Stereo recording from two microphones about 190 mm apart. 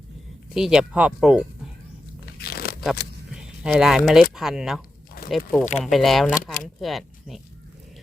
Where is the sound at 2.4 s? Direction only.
55° left (ahead or behind).